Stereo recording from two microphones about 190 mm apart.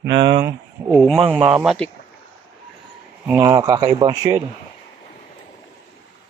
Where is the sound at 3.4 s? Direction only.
20° right (ahead or behind).